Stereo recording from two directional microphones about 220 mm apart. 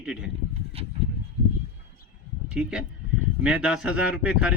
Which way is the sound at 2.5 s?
5° right (ahead or behind).